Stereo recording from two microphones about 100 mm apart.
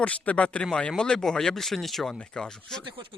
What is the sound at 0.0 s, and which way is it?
Speech, 10° left (ahead or behind).